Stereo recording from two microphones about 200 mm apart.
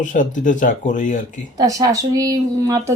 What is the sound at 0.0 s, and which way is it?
Speech, 40° left (ahead or behind).